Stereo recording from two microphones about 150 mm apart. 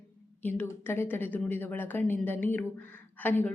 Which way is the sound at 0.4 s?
15° left (ahead or behind).